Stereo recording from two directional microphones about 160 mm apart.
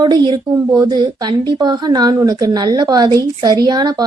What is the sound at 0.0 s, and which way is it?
A woman's voice, 25° right (ahead or behind).